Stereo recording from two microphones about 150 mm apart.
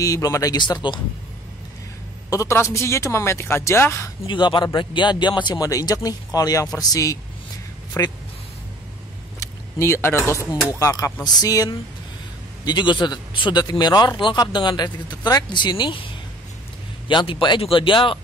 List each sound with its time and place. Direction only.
0.0 s a man's voice: 20° left (ahead or behind)
2.2 s a man's voice: 20° left (ahead or behind)
4.3 s a man's voice: 30° left (ahead or behind)
9.4 s a man's voice: 20° left (ahead or behind)
17.1 s speech: 30° left (ahead or behind)